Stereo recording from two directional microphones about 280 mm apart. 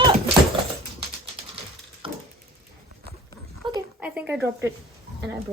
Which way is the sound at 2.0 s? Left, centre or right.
Centre.